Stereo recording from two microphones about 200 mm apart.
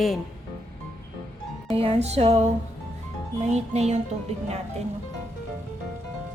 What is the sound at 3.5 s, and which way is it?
Speech, 35° right (ahead or behind).